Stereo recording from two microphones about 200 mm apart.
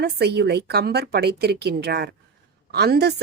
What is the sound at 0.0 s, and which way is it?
A woman's voice, 55° right (ahead or behind).